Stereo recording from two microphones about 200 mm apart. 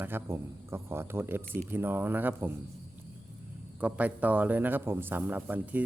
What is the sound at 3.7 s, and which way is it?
Speech, 5° right (ahead or behind).